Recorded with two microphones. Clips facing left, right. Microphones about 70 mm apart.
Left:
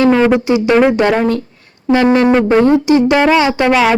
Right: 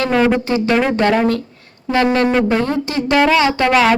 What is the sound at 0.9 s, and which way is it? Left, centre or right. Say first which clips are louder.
Speech: left 3 dB; centre.